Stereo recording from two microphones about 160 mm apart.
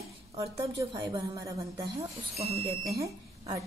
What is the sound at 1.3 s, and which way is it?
Speech, 20° right (ahead or behind).